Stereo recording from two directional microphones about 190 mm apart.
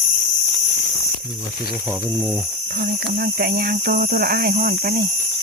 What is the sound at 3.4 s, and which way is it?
Speech, 50° right (ahead or behind).